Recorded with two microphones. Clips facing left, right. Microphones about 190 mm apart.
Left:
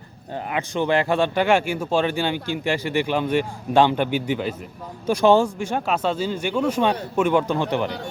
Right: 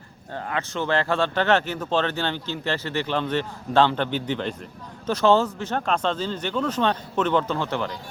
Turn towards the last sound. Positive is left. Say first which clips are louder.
# left 4 dB
turn(degrees=15)  # may be behind; listen again after turning